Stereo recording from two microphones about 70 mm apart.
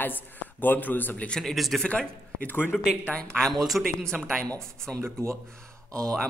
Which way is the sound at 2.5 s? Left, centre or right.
Left.